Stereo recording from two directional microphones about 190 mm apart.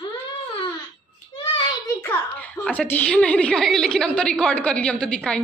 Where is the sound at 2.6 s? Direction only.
5° left (ahead or behind).